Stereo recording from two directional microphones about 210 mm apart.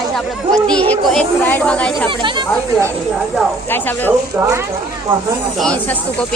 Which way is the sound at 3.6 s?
10° left (ahead or behind).